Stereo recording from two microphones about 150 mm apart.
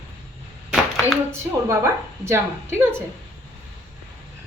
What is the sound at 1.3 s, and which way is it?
A woman's voice, 20° right (ahead or behind).